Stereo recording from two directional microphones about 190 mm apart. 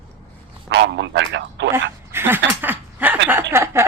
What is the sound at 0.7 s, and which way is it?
A man's voice, 70° right (ahead or behind).